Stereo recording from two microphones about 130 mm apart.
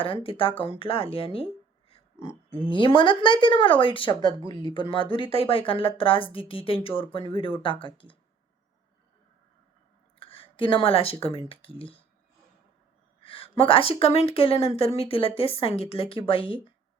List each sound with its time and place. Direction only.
0.0 s speech: 45° left (ahead or behind)
4.2 s speech: 35° right (ahead or behind)
4.7 s speech: 40° left (ahead or behind)
10.2 s speech: 45° left (ahead or behind)
13.2 s speech: 45° left (ahead or behind)